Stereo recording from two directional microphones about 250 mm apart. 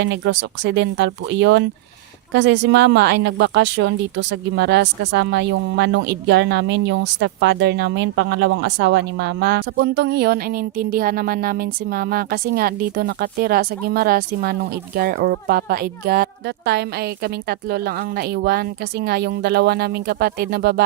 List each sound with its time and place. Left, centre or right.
0.0 s speech: right